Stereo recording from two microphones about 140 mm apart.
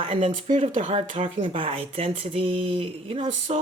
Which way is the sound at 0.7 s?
65° right (ahead or behind).